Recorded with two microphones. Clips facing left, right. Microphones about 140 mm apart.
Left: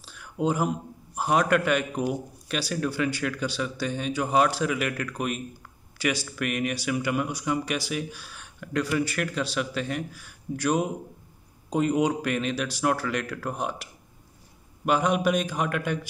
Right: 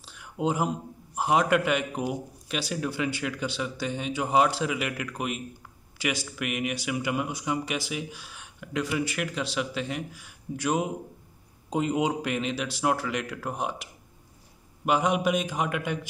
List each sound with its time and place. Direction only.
0.0 s a man's voice: 20° right (ahead or behind)
14.9 s a man's voice: 20° right (ahead or behind)